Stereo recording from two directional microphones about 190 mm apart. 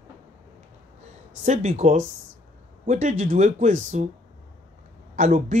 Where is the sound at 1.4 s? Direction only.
40° right (ahead or behind).